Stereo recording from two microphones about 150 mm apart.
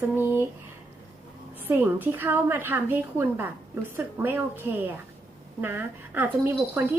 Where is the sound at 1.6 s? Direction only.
15° right (ahead or behind).